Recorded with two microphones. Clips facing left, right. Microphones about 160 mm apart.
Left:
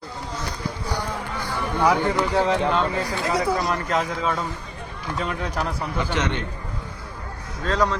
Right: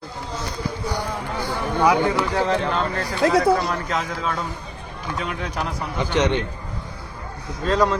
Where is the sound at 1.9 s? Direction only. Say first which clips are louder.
Even; centre (ahead or behind).